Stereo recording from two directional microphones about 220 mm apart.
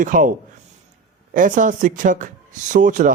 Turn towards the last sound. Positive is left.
turn(degrees=-35)  # may be behind; listen again after turning